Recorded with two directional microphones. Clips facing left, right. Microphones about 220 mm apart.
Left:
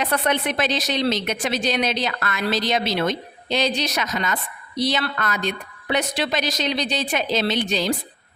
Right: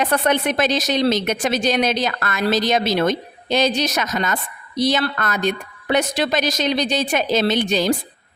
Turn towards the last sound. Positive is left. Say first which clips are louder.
# right 4 dB
turn(degrees=-45)  # may be behind; listen again after turning